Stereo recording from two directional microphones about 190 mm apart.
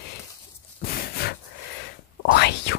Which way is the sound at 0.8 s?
55° left (ahead or behind).